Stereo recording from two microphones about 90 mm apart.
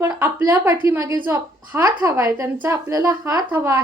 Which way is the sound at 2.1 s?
35° right (ahead or behind).